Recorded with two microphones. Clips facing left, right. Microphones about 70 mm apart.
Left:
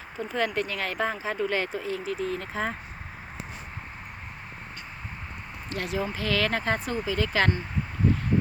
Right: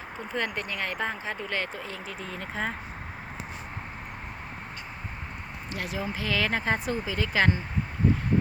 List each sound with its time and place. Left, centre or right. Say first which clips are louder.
0.3 s speech: left 3 dB; centre
5.7 s speech: left 3 dB; centre